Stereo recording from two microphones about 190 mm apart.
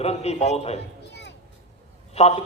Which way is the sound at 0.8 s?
65° left (ahead or behind).